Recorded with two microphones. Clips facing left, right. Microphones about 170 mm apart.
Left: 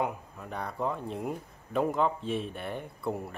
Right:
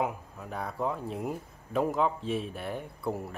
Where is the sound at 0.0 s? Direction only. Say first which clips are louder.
Even; centre (ahead or behind).